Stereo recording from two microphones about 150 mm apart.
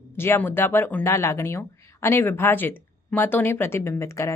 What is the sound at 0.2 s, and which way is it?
Speech, 15° left (ahead or behind).